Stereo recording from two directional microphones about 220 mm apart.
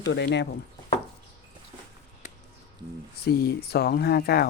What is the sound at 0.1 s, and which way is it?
Speech, 50° left (ahead or behind).